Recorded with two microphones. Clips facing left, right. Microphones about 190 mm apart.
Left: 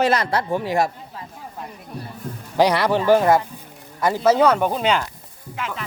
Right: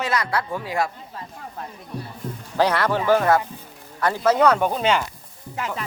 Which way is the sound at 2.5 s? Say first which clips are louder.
Left 3 dB; 15° left (ahead or behind).